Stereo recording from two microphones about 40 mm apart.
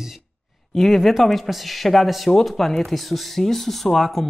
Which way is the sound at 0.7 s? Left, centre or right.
Centre.